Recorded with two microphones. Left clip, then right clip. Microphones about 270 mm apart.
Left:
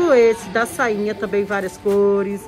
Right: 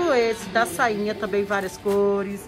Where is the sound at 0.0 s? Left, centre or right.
Centre.